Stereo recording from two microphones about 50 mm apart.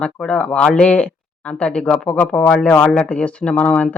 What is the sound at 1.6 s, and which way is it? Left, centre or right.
Speech, left.